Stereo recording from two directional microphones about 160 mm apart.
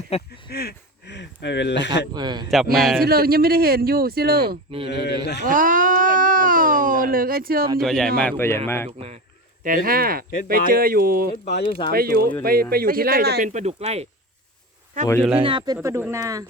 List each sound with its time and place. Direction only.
0.1 s speech: 40° left (ahead or behind)
0.5 s a sound: 85° left
2.1 s speech: 25° right (ahead or behind)
2.7 s speech: centre (ahead or behind)
3.0 s speech: 70° right (ahead or behind)
4.9 s a man's voice: 90° left
5.5 s a sound: 55° right (ahead or behind)
7.8 s speech: centre (ahead or behind)
9.0 s a sound: 40° right (ahead or behind)
9.6 s speech: 60° right (ahead or behind)
11.6 s speech: 35° left (ahead or behind)
11.9 s speech: 70° right (ahead or behind)
13.4 s speech: 45° right (ahead or behind)
15.4 s speech: 35° right (ahead or behind)